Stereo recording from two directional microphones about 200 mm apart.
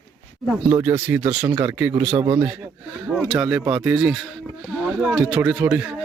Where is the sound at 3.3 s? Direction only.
5° right (ahead or behind).